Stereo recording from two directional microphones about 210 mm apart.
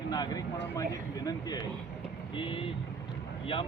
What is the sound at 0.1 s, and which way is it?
Speech, 20° left (ahead or behind).